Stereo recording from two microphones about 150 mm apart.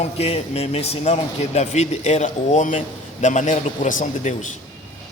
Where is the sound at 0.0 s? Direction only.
45° left (ahead or behind).